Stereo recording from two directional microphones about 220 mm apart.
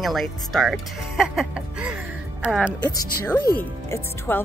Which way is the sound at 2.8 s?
15° left (ahead or behind).